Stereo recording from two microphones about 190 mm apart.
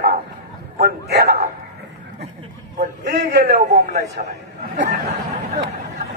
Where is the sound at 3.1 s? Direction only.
65° right (ahead or behind).